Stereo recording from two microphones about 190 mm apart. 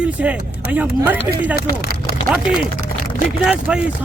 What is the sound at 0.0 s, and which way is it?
Speech, 5° right (ahead or behind).